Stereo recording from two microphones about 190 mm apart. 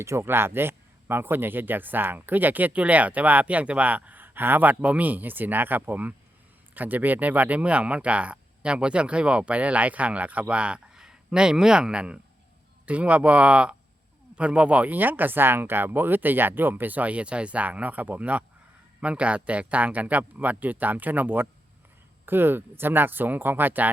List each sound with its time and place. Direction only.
0.0 s speech: 15° right (ahead or behind)